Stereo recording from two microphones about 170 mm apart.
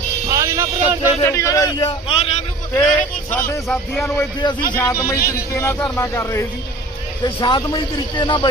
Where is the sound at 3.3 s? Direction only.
15° left (ahead or behind).